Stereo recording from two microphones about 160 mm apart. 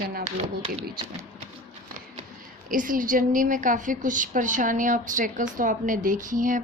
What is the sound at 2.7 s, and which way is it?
A woman's voice, 55° right (ahead or behind).